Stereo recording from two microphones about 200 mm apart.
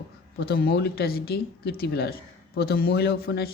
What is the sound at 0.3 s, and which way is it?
Speech, 50° left (ahead or behind).